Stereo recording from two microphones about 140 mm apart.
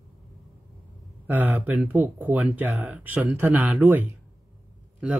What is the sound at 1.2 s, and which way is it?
Speech, 10° right (ahead or behind).